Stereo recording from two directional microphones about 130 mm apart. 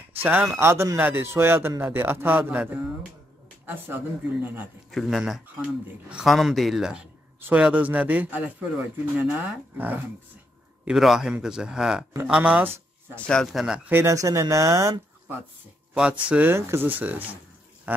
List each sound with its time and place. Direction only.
0.2 s a man's voice: 15° right (ahead or behind)
4.9 s a man's voice: centre (ahead or behind)
10.9 s a man's voice: 5° right (ahead or behind)
13.1 s speech: 5° left (ahead or behind)
13.8 s speech: 20° right (ahead or behind)
15.9 s a man's voice: 10° right (ahead or behind)